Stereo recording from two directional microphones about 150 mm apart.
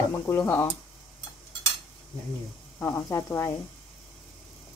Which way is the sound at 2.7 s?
20° left (ahead or behind).